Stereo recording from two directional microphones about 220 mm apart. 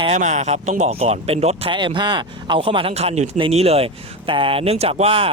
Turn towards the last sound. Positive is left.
turn(degrees=-25)  # may be behind; listen again after turning